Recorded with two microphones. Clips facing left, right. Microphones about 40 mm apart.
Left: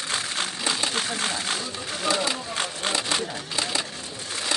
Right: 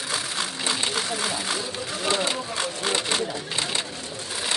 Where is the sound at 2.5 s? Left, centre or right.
Left.